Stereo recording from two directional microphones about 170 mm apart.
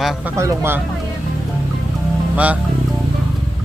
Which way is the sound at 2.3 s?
10° right (ahead or behind).